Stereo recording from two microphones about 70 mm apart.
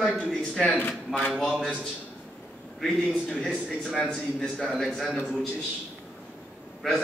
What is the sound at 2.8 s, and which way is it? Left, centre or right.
A man's voice, centre.